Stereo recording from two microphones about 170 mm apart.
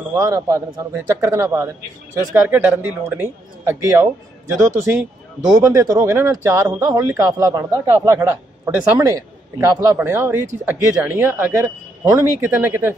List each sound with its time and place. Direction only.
0.1 s speech: 20° right (ahead or behind)